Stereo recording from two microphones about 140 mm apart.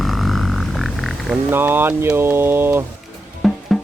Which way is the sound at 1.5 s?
15° right (ahead or behind).